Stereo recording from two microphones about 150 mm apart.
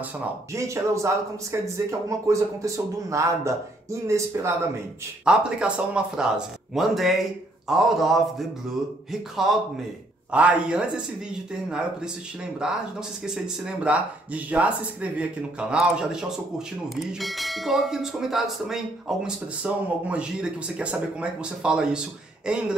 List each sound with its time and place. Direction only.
0.5 s a man's voice: 20° right (ahead or behind)
5.2 s speech: 5° right (ahead or behind)
10.3 s speech: 5° right (ahead or behind)
12.6 s speech: 5° right (ahead or behind)
13.8 s speech: 10° right (ahead or behind)